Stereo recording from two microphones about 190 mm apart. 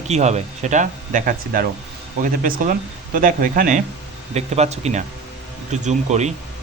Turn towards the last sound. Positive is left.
turn(degrees=-35)  # may be behind; listen again after turning